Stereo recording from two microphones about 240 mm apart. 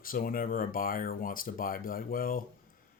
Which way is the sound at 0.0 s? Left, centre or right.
Left.